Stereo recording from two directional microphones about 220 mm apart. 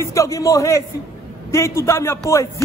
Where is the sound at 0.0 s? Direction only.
15° left (ahead or behind).